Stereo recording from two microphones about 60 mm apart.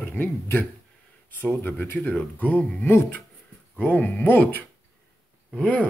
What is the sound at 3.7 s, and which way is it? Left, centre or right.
Speech, left.